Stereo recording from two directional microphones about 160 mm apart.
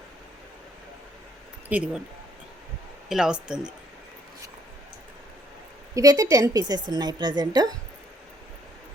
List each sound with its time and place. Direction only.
1.7 s speech: 10° right (ahead or behind)
3.1 s speech: 5° right (ahead or behind)
5.9 s a woman's voice: 20° right (ahead or behind)